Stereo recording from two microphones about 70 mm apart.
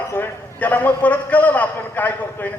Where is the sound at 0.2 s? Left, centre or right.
Left.